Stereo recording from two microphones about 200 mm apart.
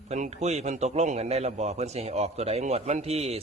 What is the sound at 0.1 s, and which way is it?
A man's voice, 35° right (ahead or behind).